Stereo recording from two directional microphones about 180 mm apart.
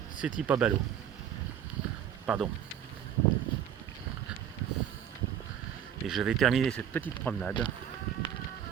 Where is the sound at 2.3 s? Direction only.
5° right (ahead or behind).